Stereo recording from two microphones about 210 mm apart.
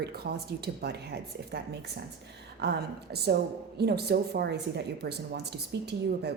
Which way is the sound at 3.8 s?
50° right (ahead or behind).